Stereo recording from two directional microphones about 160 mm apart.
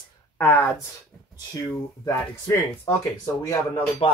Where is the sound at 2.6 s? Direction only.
15° left (ahead or behind).